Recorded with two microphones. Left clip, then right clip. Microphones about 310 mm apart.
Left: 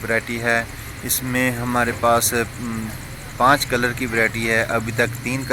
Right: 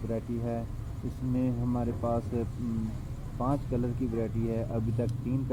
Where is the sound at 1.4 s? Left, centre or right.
Left.